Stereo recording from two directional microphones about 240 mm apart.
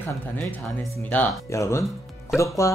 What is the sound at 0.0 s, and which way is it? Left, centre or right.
Speech, centre.